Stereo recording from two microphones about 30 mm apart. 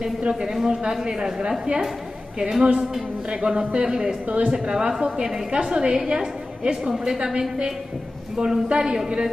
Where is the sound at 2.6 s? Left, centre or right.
Right.